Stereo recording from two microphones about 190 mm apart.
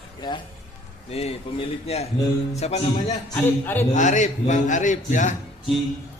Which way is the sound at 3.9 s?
40° left (ahead or behind).